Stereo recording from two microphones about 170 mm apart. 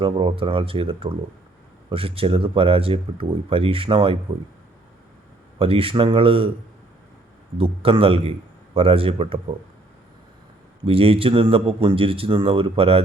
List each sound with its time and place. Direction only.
0.0 s speech: 30° right (ahead or behind)
5.5 s speech: 35° right (ahead or behind)
7.6 s speech: 35° right (ahead or behind)
10.8 s speech: 35° right (ahead or behind)